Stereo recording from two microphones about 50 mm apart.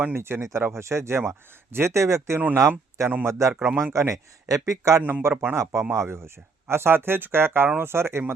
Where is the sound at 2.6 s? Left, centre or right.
Right.